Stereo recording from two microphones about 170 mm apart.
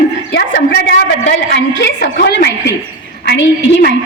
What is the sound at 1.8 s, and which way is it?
Speech, 70° left (ahead or behind).